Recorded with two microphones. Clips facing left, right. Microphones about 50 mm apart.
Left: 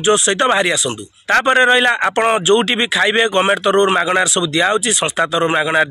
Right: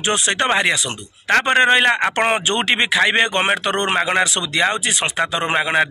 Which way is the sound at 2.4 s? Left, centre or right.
Right.